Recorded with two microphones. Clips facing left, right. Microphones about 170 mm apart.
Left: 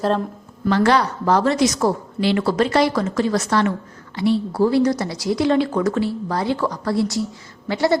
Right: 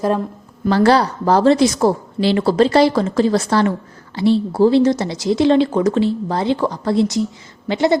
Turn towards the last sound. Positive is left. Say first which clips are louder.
# right 3 dB
turn(degrees=-20)  # may be behind; listen again after turning